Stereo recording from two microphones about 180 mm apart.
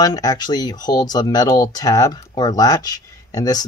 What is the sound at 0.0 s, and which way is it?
Speech, 20° left (ahead or behind).